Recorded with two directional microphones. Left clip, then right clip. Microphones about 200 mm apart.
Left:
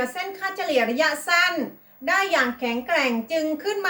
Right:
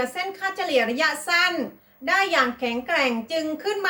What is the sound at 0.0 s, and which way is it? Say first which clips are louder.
A woman's voice: right 1 dB; 5° right (ahead or behind).